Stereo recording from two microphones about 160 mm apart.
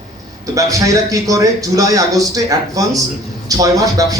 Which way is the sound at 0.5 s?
20° right (ahead or behind).